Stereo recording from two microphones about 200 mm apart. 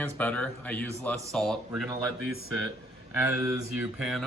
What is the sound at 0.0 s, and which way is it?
Speech, 5° left (ahead or behind).